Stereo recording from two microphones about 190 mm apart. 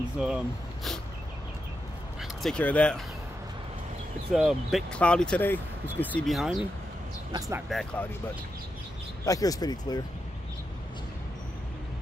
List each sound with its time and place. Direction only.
0.2 s speech: 5° right (ahead or behind)
2.4 s speech: 5° left (ahead or behind)
4.3 s speech: centre (ahead or behind)
7.3 s speech: 20° right (ahead or behind)
7.7 s speech: 5° left (ahead or behind)
9.2 s speech: 20° left (ahead or behind)